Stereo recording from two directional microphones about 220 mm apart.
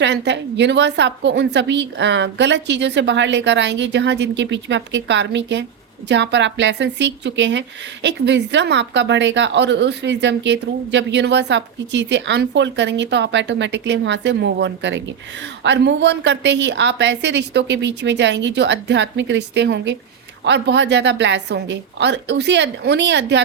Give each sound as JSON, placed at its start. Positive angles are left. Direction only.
{"t": 0.0, "sound": "a woman's voice", "side_deg": -50}